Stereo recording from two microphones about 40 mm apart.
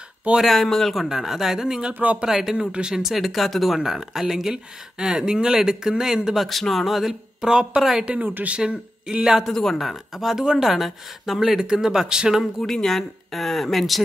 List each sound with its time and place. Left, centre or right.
0.4 s speech: centre
1.0 s speech: centre
2.0 s speech: right
2.2 s speech: centre
3.8 s speech: centre
4.9 s speech: right
6.3 s speech: centre
7.4 s speech: right
8.2 s speech: right
8.5 s speech: right
9.5 s a woman's voice: centre
9.8 s speech: centre
12.7 s speech: centre